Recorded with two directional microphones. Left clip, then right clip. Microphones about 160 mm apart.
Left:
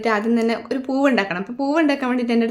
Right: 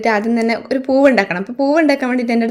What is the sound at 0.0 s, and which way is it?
A woman's voice, 25° right (ahead or behind).